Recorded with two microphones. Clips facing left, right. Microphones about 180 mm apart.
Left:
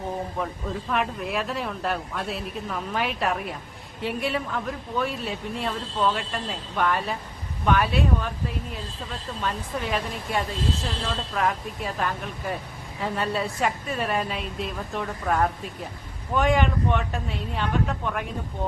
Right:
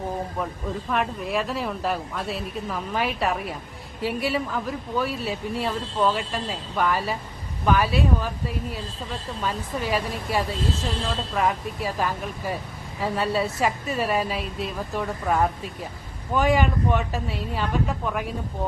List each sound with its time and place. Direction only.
0.9 s speech: centre (ahead or behind)